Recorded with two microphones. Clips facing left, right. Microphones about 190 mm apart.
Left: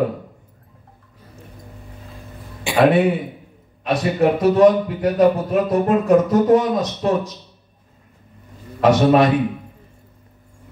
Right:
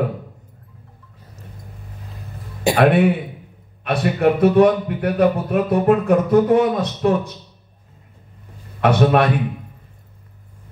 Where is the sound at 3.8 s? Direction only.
55° right (ahead or behind).